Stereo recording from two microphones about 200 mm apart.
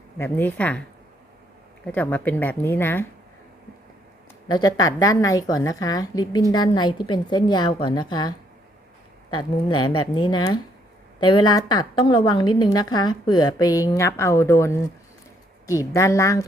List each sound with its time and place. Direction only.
0.2 s a woman's voice: 10° left (ahead or behind)
1.9 s a woman's voice: 10° left (ahead or behind)
4.4 s a woman's voice: 20° left (ahead or behind)